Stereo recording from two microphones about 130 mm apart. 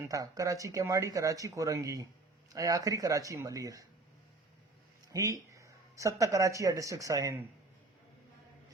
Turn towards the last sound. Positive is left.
turn(degrees=-25)  # may be behind; listen again after turning